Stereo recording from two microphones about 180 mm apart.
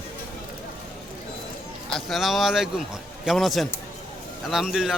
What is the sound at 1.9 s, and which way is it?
Speech, centre (ahead or behind).